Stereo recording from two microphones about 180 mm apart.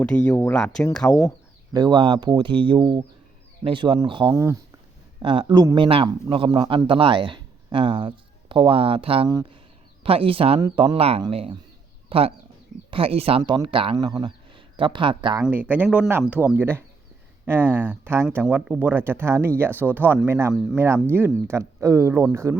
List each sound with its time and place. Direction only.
0.0 s speech: 5° left (ahead or behind)
1.7 s a man's voice: 25° right (ahead or behind)
4.3 s speech: 15° right (ahead or behind)
5.2 s a man's voice: 25° right (ahead or behind)
9.3 s a man's voice: 20° right (ahead or behind)
10.0 s a man's voice: 30° right (ahead or behind)
15.4 s speech: 10° right (ahead or behind)